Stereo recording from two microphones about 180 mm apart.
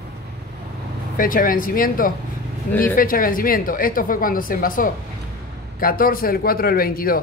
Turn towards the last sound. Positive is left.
turn(degrees=55)  # may be behind; listen again after turning